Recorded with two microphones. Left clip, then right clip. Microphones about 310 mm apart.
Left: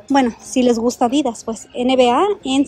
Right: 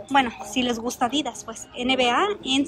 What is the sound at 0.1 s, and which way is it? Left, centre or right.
A woman's voice, centre.